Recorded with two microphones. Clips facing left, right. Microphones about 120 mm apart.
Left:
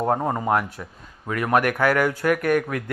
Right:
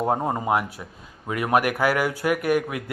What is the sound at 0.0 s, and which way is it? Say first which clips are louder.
Speech: left 1 dB; 10° right (ahead or behind).